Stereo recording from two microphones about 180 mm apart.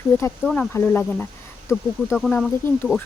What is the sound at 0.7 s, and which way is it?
Speech, 15° left (ahead or behind).